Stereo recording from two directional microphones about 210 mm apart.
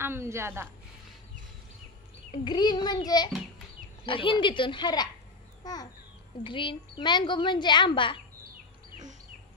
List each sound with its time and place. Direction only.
0.0 s a woman's voice: 10° right (ahead or behind)
2.3 s a woman's voice: 20° left (ahead or behind)
4.0 s a woman's voice: 25° left (ahead or behind)